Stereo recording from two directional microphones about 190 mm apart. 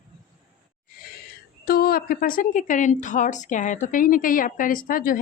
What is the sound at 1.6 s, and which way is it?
A woman's voice, 55° left (ahead or behind).